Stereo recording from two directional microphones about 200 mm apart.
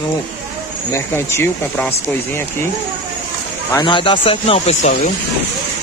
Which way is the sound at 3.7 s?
25° left (ahead or behind).